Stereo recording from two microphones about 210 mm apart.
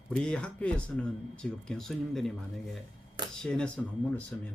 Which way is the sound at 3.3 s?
5° left (ahead or behind).